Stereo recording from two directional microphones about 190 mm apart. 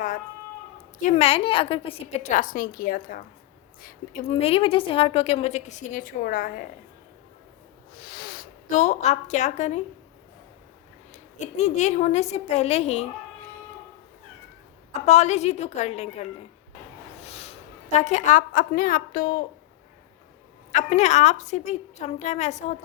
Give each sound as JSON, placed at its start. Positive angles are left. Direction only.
{"t": 1.0, "sound": "a woman's voice", "side_deg": 35}
{"t": 4.3, "sound": "a woman's voice", "side_deg": 30}
{"t": 7.9, "sound": "a sound", "side_deg": 55}
{"t": 11.3, "sound": "a woman's voice", "side_deg": 40}
{"t": 15.0, "sound": "a woman's voice", "side_deg": 35}
{"t": 17.2, "sound": "a sound", "side_deg": 35}
{"t": 17.9, "sound": "a woman's voice", "side_deg": 35}
{"t": 20.7, "sound": "a woman's voice", "side_deg": 35}